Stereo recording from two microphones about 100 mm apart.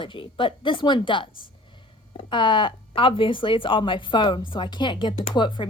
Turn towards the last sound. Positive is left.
turn(degrees=50)  # may be behind; listen again after turning